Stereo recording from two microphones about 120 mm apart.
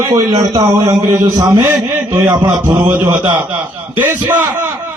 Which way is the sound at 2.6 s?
15° right (ahead or behind).